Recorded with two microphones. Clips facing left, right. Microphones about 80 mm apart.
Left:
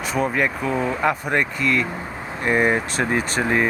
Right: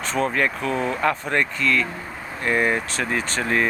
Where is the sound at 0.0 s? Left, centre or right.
Centre.